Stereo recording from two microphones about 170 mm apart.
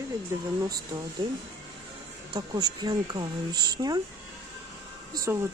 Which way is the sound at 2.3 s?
25° right (ahead or behind).